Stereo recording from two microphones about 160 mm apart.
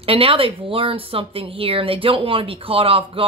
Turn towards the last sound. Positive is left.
turn(degrees=-35)  # may be behind; listen again after turning